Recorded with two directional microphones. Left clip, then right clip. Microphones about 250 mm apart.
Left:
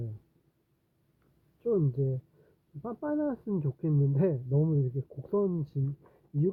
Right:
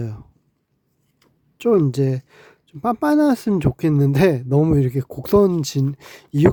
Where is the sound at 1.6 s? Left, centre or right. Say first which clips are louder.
Right 13 dB; right.